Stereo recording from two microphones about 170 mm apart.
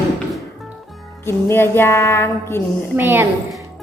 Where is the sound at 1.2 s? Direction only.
15° left (ahead or behind).